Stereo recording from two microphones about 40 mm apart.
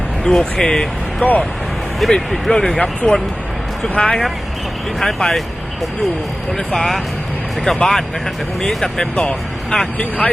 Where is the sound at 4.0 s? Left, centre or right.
Left.